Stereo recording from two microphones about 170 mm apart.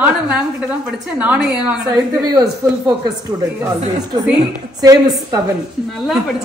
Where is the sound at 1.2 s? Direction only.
5° right (ahead or behind).